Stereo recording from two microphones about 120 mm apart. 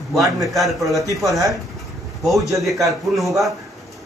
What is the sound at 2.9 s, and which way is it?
Speech, centre (ahead or behind).